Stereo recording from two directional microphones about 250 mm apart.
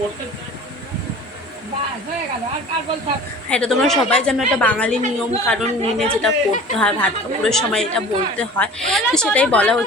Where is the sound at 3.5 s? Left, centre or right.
Centre.